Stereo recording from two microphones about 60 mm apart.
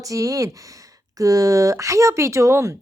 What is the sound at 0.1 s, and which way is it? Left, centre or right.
Speech, right.